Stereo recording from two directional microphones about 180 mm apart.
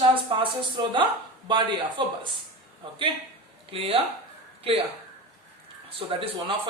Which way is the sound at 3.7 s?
30° right (ahead or behind).